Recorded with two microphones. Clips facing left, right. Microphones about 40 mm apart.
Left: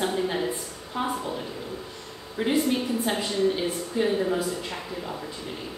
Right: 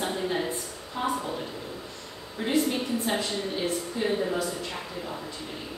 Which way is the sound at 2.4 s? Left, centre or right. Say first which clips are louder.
Left 2 dB; left.